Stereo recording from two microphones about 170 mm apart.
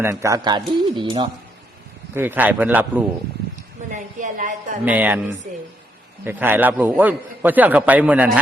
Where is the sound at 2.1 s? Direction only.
10° right (ahead or behind).